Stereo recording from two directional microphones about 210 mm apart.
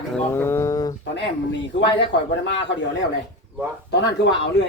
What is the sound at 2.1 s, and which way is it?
Speech, 60° left (ahead or behind).